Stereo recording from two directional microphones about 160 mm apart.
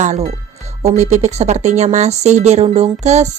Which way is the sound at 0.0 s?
45° right (ahead or behind).